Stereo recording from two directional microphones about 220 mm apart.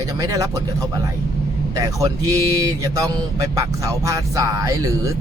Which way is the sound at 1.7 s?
15° right (ahead or behind).